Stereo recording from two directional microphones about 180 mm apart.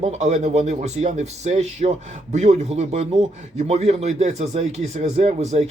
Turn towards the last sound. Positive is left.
turn(degrees=-35)  # may be behind; listen again after turning